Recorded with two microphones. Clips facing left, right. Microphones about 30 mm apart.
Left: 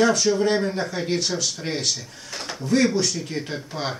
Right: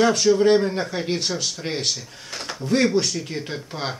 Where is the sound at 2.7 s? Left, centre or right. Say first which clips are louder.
Even; right.